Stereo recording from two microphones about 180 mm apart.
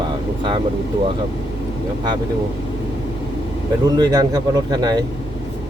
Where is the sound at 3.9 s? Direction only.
20° right (ahead or behind).